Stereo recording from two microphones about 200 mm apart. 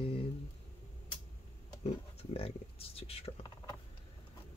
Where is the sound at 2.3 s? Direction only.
30° left (ahead or behind).